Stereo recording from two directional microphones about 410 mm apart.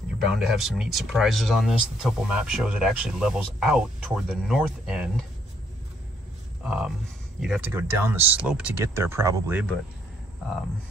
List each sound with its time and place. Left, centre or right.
0.3 s speech: centre
6.6 s speech: centre